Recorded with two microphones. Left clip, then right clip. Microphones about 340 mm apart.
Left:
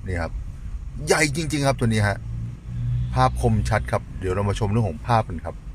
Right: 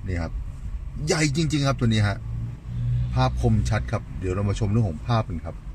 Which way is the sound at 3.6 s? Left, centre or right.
Left.